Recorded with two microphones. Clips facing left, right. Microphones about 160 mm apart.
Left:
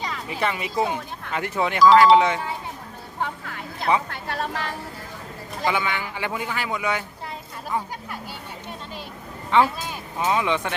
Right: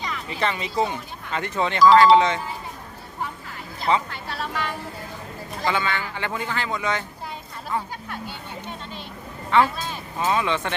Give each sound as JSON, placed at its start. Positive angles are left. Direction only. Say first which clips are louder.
{"t": 0.3, "sound": "speech", "louder": "even", "side_deg": 10}
{"t": 1.8, "sound": "speech", "louder": "even", "side_deg": 0}
{"t": 3.2, "sound": "music", "louder": "left 3 dB", "side_deg": 65}
{"t": 4.1, "sound": "a woman's voice", "louder": "left 2 dB", "side_deg": 50}
{"t": 5.6, "sound": "speech", "louder": "even", "side_deg": 15}
{"t": 9.5, "sound": "speech", "louder": "even", "side_deg": 15}